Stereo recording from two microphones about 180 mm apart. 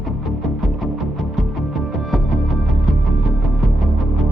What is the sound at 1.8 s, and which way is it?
Music, centre (ahead or behind).